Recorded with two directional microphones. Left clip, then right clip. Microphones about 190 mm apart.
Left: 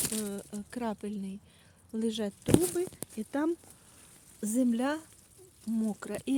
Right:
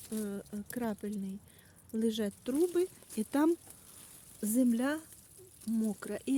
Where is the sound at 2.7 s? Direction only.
25° right (ahead or behind).